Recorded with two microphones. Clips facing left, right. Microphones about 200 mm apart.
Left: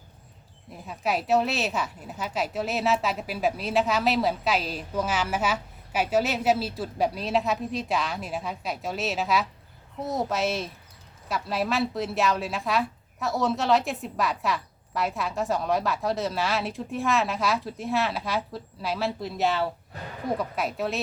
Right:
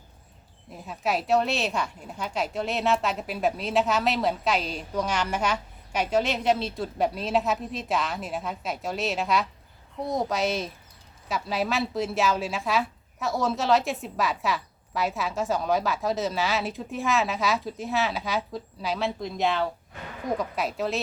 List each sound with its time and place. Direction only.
0.7 s a woman's voice: centre (ahead or behind)
19.9 s a sound: 35° left (ahead or behind)
20.4 s a woman's voice: centre (ahead or behind)